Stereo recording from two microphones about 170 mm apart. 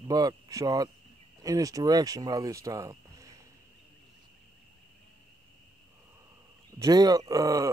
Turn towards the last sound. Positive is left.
turn(degrees=-20)  # may be behind; listen again after turning